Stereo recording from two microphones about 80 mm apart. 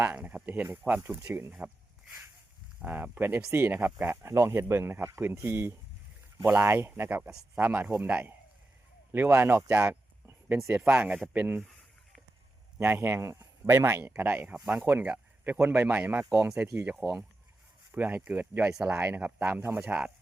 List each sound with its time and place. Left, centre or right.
0.0 s speech: right
1.2 s speech: right
1.5 s speech: centre
2.8 s speech: right
12.8 s speech: right
13.7 s speech: right; by 17.2 s centre
17.9 s speech: right
18.7 s speech: centre
19.0 s speech: right